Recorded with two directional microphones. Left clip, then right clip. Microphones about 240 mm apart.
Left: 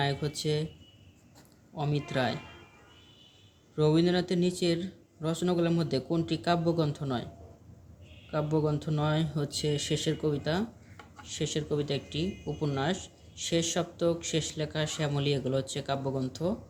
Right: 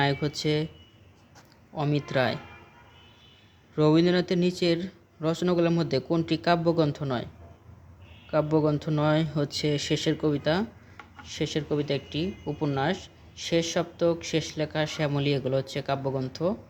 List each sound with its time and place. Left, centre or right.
0.0 s speech: right
1.7 s speech: right
3.8 s speech: right
8.3 s speech: right